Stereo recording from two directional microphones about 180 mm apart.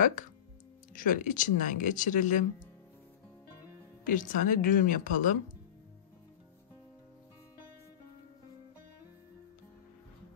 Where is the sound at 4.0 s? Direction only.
50° left (ahead or behind).